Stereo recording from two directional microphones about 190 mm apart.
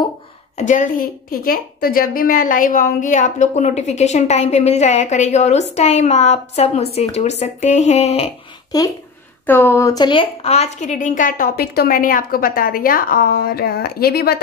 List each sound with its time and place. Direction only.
0.6 s a woman's voice: 40° left (ahead or behind)
8.7 s a woman's voice: 20° left (ahead or behind); by 14.4 s 55° left (ahead or behind)